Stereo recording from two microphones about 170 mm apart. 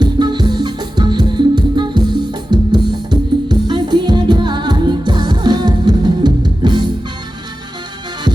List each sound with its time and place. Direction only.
0.0 s music: 25° right (ahead or behind)